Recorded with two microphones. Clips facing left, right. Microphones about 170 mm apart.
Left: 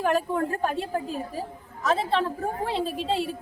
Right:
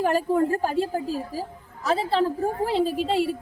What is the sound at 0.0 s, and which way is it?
A woman's voice, 35° right (ahead or behind).